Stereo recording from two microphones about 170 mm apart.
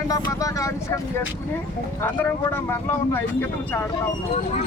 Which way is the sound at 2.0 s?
15° left (ahead or behind).